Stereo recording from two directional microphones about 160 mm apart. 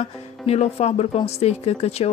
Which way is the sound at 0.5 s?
40° left (ahead or behind).